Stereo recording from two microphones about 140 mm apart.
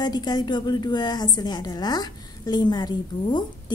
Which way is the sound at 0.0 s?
30° left (ahead or behind).